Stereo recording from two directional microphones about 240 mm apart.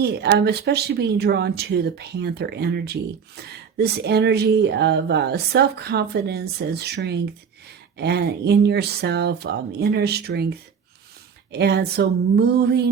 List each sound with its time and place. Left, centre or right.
0.0 s speech: right